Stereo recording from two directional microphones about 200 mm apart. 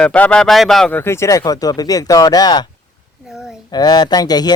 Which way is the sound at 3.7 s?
20° left (ahead or behind).